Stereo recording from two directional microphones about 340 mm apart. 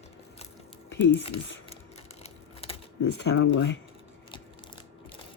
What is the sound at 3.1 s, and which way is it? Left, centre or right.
Speech, left.